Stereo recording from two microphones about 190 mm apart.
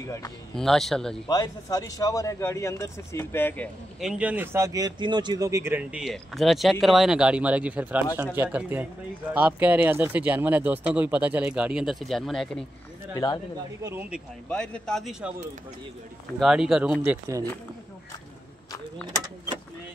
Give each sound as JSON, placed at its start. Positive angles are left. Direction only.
{"t": 0.0, "sound": "speech", "side_deg": 15}
{"t": 0.6, "sound": "speech", "side_deg": 0}
{"t": 1.3, "sound": "speech", "side_deg": 20}
{"t": 4.0, "sound": "speech", "side_deg": -5}
{"t": 13.1, "sound": "speech", "side_deg": 20}
{"t": 13.8, "sound": "speech", "side_deg": -10}
{"t": 14.5, "sound": "speech", "side_deg": 5}
{"t": 16.3, "sound": "speech", "side_deg": 0}